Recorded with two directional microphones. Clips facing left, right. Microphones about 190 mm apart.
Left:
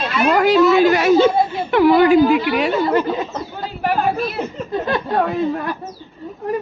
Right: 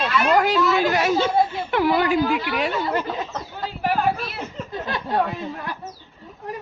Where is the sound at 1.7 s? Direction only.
85° left.